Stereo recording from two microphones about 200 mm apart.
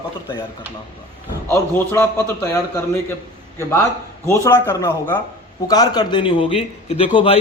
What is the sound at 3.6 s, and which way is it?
A man's voice, 15° left (ahead or behind).